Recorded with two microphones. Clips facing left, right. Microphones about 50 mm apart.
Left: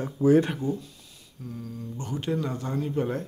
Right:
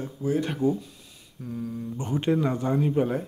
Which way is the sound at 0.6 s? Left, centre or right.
Right.